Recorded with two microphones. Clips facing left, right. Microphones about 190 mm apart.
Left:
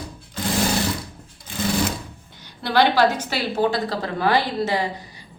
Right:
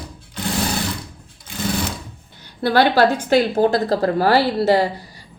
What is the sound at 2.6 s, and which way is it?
A woman's voice, 45° right (ahead or behind).